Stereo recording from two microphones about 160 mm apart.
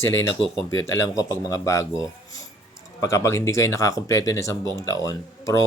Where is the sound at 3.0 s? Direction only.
20° left (ahead or behind).